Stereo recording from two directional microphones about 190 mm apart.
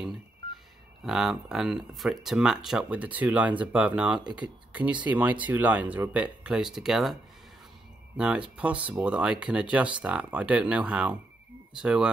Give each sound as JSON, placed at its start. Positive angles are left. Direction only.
{"t": 1.0, "sound": "speech", "side_deg": 0}
{"t": 8.2, "sound": "speech", "side_deg": -5}